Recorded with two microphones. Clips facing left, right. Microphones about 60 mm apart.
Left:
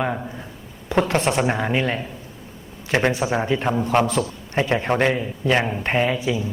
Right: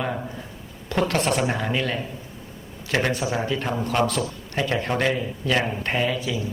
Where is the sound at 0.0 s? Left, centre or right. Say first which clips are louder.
Left 3 dB; centre.